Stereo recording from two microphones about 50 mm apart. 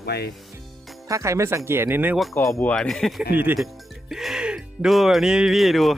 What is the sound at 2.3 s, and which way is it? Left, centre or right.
Speech, left.